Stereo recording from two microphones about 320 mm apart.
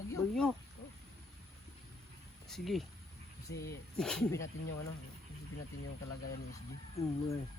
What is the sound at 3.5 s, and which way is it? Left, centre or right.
Speech, left.